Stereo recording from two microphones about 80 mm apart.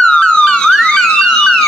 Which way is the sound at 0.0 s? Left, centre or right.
Centre.